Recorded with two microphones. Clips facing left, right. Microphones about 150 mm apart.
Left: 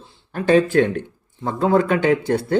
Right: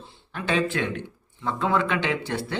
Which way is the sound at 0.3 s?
45° left (ahead or behind).